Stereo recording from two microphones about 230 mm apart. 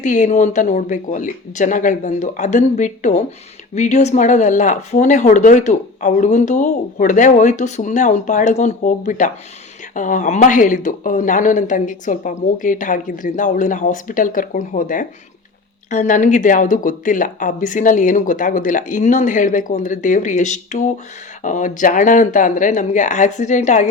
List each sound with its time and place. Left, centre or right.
0.0 s speech: left